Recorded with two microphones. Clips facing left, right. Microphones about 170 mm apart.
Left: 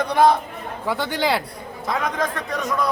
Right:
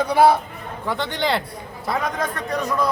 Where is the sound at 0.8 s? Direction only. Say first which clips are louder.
Left 1 dB; 5° left (ahead or behind).